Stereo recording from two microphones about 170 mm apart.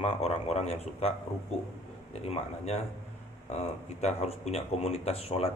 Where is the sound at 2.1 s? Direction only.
40° left (ahead or behind).